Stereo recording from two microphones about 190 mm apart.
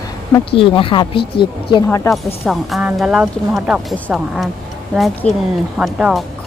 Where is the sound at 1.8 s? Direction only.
15° left (ahead or behind).